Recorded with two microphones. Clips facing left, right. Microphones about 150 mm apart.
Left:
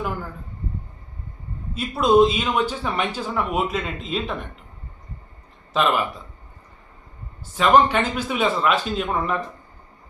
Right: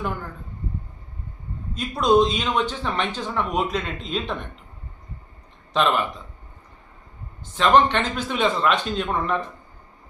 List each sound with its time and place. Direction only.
1.7 s speech: 5° left (ahead or behind)
5.7 s speech: 5° left (ahead or behind)
7.5 s speech: 10° left (ahead or behind)